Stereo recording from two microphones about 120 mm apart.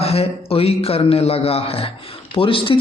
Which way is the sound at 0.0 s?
55° left (ahead or behind).